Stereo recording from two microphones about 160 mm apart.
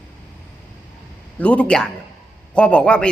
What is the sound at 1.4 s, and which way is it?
A man's voice, 10° left (ahead or behind).